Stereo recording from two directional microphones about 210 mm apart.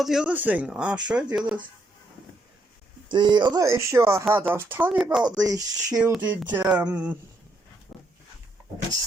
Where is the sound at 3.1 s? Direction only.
20° right (ahead or behind); by 5.2 s 5° right (ahead or behind).